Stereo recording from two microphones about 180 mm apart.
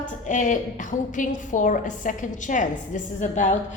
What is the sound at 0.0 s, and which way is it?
A woman's voice, 45° left (ahead or behind).